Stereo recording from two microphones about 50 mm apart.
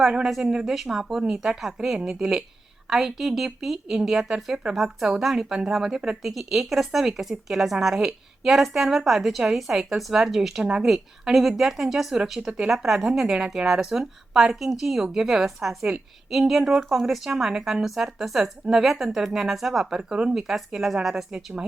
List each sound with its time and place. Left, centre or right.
0.3 s a woman's voice: centre
10.6 s a woman's voice: centre
10.8 s a woman's voice: centre